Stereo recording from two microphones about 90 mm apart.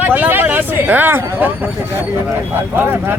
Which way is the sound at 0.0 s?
20° right (ahead or behind).